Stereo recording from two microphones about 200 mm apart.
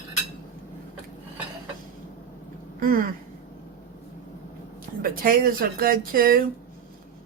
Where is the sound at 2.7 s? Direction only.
45° right (ahead or behind).